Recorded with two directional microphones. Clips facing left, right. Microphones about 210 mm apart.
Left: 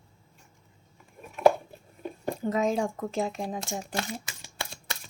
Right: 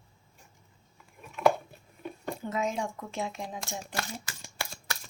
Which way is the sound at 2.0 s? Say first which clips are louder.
Left 4 dB; 40° left (ahead or behind).